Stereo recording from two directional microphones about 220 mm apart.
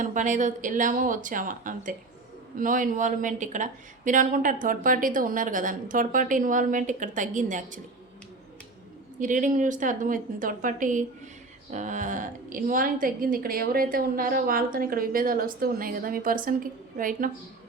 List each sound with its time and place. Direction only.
0.0 s a woman's voice: 35° right (ahead or behind)
9.2 s a woman's voice: 35° right (ahead or behind)